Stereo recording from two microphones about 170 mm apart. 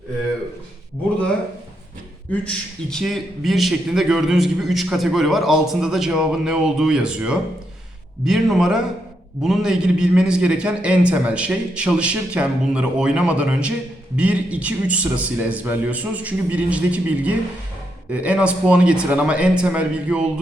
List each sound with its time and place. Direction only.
2.3 s a man's voice: 5° left (ahead or behind)